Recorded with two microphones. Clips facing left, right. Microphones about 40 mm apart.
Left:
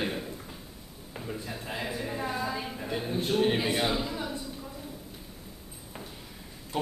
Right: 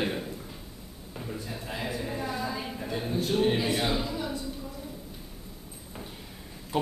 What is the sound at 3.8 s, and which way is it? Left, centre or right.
Speech, centre.